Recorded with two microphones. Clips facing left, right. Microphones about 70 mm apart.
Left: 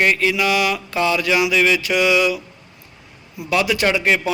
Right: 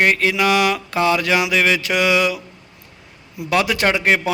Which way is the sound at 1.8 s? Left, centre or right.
Right.